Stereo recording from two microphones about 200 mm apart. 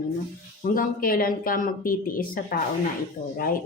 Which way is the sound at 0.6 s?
45° left (ahead or behind).